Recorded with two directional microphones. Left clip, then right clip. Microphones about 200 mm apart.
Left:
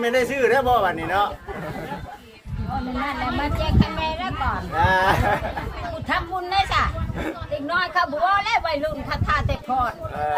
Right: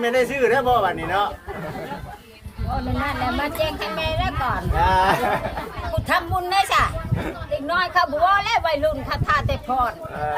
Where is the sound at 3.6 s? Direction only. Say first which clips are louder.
Right 1 dB; 55° right (ahead or behind).